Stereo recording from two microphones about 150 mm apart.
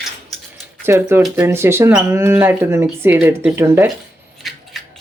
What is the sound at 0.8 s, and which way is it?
A woman's voice, 15° right (ahead or behind).